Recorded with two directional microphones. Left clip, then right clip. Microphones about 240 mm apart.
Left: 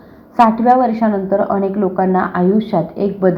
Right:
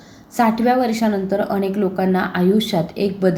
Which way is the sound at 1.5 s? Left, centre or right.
Centre.